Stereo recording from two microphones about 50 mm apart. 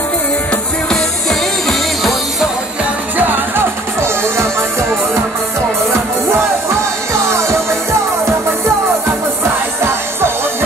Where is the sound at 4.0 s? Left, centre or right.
Right.